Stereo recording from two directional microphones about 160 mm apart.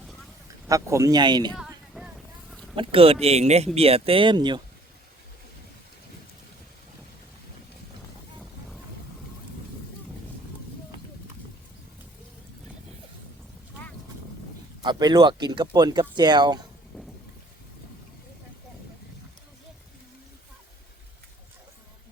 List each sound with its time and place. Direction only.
0.4 s speech: 20° right (ahead or behind)
1.5 s vehicle: centre (ahead or behind)
2.7 s speech: 35° right (ahead or behind)
14.8 s speech: 25° right (ahead or behind)